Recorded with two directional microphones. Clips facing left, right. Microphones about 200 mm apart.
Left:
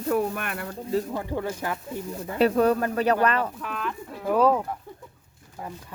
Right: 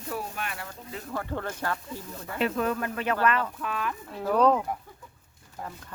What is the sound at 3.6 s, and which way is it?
Speech, centre (ahead or behind).